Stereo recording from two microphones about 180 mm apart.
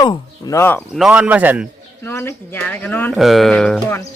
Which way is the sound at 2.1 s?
15° left (ahead or behind).